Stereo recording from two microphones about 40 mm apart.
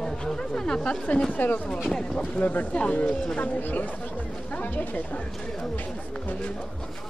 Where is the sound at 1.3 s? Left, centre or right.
Left.